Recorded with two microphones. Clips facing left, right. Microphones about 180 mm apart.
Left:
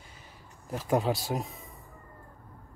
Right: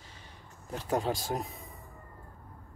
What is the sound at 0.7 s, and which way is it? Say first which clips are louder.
Speech: left 3 dB; 10° left (ahead or behind).